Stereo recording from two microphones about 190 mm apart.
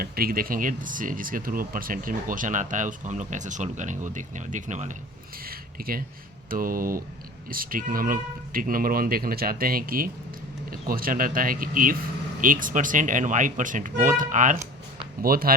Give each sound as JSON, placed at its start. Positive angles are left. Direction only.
{"t": 0.0, "sound": "speech", "side_deg": -50}
{"t": 5.5, "sound": "a sound", "side_deg": -50}
{"t": 6.5, "sound": "speech", "side_deg": -50}